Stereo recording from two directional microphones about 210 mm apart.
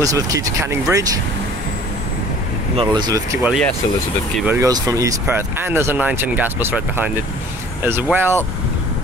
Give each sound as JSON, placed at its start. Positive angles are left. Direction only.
{"t": 0.0, "sound": "speech", "side_deg": -15}
{"t": 2.7, "sound": "speech", "side_deg": -25}
{"t": 3.4, "sound": "speech", "side_deg": 0}
{"t": 4.5, "sound": "speech", "side_deg": -15}